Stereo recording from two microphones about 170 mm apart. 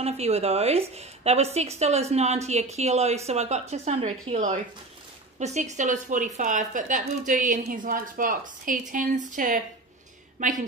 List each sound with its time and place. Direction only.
0.0 s a woman's voice: 40° right (ahead or behind)